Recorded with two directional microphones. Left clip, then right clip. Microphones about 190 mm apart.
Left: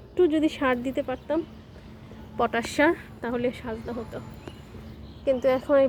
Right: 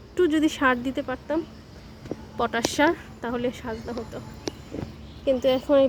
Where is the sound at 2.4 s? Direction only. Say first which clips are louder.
Even; 5° left (ahead or behind).